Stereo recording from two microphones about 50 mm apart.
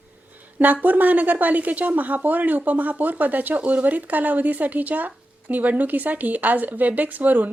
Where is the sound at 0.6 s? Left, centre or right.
Right.